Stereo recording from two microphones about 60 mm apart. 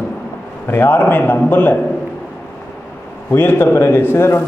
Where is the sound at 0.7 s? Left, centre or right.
Left.